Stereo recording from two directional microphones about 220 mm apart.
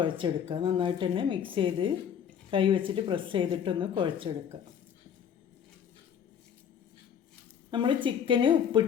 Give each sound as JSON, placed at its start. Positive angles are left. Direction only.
{"t": 0.0, "sound": "a woman's voice", "side_deg": -25}
{"t": 7.7, "sound": "a woman's voice", "side_deg": -20}